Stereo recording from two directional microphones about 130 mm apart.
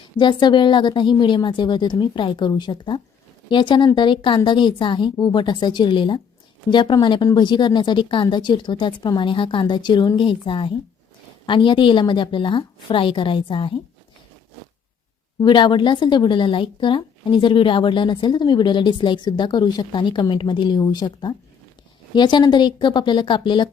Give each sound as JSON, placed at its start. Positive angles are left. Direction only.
{"t": 0.2, "sound": "speech", "side_deg": 35}
{"t": 15.4, "sound": "speech", "side_deg": 35}